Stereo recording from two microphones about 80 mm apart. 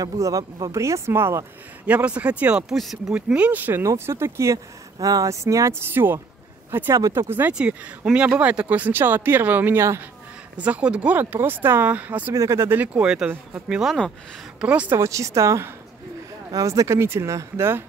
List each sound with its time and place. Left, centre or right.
0.0 s speech: right
1.9 s speech: centre
2.7 s speech: centre
3.3 s speech: centre
3.8 s speech: right
5.0 s speech: right
5.9 s speech: right
6.9 s speech: right
7.2 s speech: right
7.5 s speech: centre
12.4 s speech: right
12.7 s speech: centre
14.9 s speech: right